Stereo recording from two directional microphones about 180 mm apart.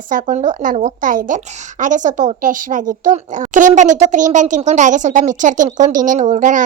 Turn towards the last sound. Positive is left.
turn(degrees=-45)  # may be behind; listen again after turning